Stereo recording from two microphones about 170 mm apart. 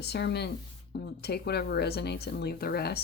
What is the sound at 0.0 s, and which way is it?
A woman's voice, 75° left (ahead or behind).